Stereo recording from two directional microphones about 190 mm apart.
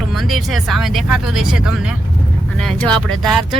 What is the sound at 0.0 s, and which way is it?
Speech, centre (ahead or behind).